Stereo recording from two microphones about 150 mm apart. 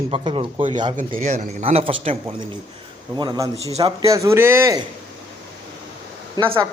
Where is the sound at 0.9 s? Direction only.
55° right (ahead or behind); by 2.1 s 40° right (ahead or behind).